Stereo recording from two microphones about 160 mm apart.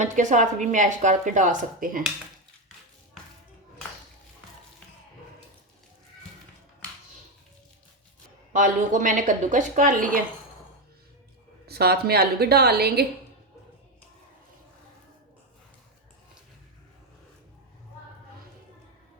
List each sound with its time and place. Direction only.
0.0 s speech: 50° right (ahead or behind)
8.5 s speech: 55° right (ahead or behind)
11.6 s a woman's voice: 80° right